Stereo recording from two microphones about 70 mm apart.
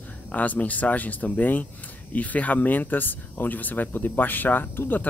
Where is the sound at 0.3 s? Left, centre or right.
Left.